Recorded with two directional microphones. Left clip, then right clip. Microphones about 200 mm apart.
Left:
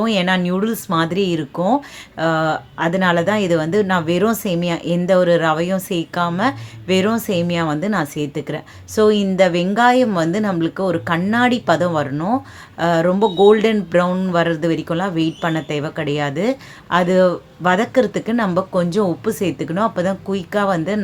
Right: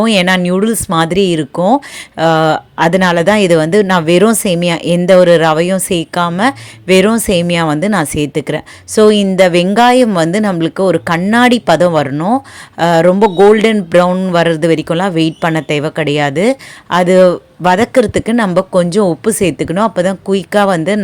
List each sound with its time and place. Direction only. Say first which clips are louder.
0.0 s speech: right 7 dB; 40° right (ahead or behind)